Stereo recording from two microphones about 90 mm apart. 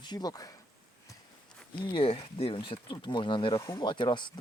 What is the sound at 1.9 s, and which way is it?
Speech, 90° left.